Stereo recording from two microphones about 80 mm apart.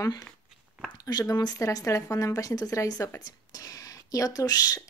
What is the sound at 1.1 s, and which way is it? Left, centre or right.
Speech, left.